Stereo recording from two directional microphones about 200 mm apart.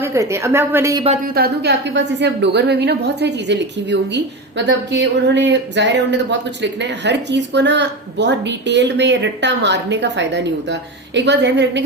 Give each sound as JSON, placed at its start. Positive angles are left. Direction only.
{"t": 0.0, "sound": "a woman's voice", "side_deg": -15}
{"t": 1.0, "sound": "speech", "side_deg": -35}
{"t": 1.3, "sound": "a woman's voice", "side_deg": -55}